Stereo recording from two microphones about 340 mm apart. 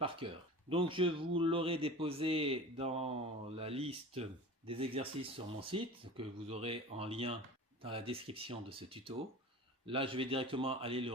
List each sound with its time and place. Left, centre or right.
0.2 s a man's voice: centre